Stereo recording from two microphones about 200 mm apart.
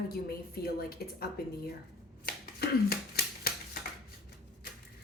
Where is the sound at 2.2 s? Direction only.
50° left (ahead or behind).